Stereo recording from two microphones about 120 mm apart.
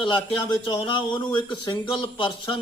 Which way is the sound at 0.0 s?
40° left (ahead or behind).